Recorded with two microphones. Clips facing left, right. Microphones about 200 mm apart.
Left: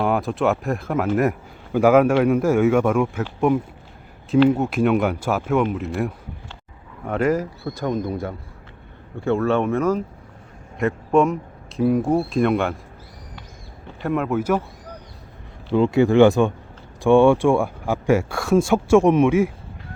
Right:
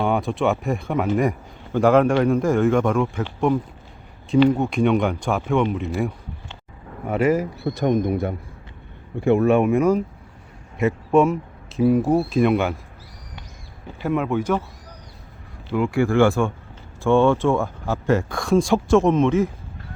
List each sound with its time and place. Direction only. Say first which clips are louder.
0.0 s speech: left 1 dB; centre (ahead or behind)
7.6 s a man's voice: right 4 dB; 25° right (ahead or behind); by 12.8 s centre (ahead or behind)
14.0 s speech: even; centre (ahead or behind)
15.7 s speech: left 4 dB; 25° left (ahead or behind)